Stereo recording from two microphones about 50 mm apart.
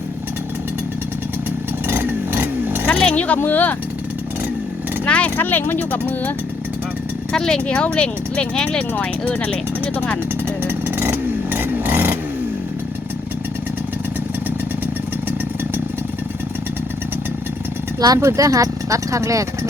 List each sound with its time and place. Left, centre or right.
1.9 s vehicle: right
2.8 s a sound: left
3.3 s speech: left
5.0 s a sound: left
5.4 s speech: left
5.9 s speech: left
7.3 s speech: centre
10.4 s vehicle: right
18.2 s speech: right